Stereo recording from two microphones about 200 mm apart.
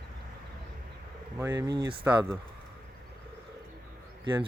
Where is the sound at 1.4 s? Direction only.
15° right (ahead or behind).